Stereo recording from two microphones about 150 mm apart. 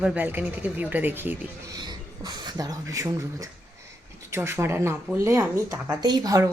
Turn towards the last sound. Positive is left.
turn(degrees=-25)  # may be behind; listen again after turning